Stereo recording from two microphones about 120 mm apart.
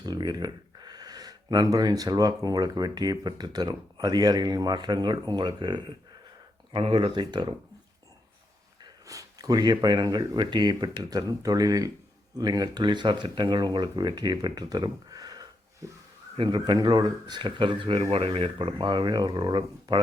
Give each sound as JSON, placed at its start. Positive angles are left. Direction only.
{"t": 0.0, "sound": "speech", "side_deg": -35}
{"t": 8.8, "sound": "speech", "side_deg": -30}